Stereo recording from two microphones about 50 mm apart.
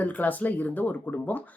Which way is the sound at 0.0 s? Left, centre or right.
Left.